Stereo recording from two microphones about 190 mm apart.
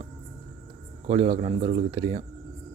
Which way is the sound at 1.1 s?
30° right (ahead or behind).